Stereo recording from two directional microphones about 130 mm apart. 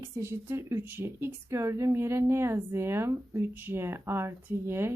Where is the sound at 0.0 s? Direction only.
20° right (ahead or behind).